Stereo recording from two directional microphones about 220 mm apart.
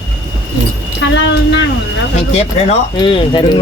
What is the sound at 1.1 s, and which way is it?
Speech, 55° left (ahead or behind).